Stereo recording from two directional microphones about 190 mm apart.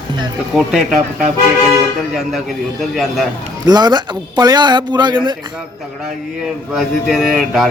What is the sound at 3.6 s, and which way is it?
Speech, 20° right (ahead or behind).